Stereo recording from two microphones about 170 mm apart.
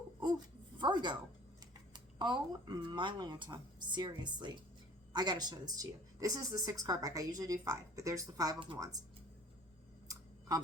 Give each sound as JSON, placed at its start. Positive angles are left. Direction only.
{"t": 0.8, "sound": "speech", "side_deg": -25}